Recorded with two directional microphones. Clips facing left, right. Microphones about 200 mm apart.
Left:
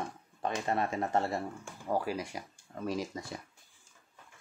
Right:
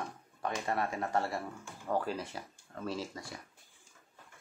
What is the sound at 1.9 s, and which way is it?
Speech, 10° left (ahead or behind).